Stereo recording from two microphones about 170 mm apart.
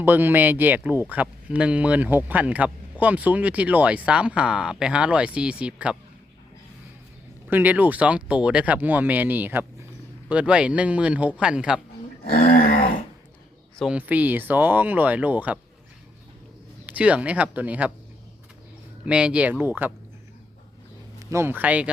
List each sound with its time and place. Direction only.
0.0 s speech: 10° right (ahead or behind)
7.5 s speech: 10° right (ahead or behind)
12.3 s a sound: 55° left (ahead or behind)
13.7 s speech: 5° right (ahead or behind)
16.8 s speech: 10° right (ahead or behind)
19.0 s speech: 5° right (ahead or behind)
21.2 s speech: 15° right (ahead or behind)